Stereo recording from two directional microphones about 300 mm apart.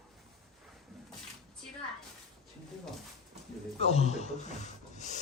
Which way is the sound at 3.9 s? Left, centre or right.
Left.